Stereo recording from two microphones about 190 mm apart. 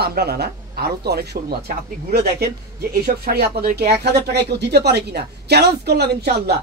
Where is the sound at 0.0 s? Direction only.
55° right (ahead or behind).